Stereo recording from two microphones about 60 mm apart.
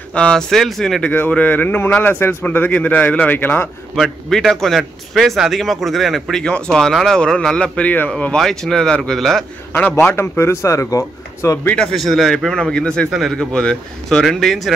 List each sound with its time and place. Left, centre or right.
0.1 s speech: centre
1.3 s a man's voice: left
3.3 s a man's voice: left
3.9 s a man's voice: centre
6.4 s speech: centre
9.7 s a man's voice: left
11.9 s speech: centre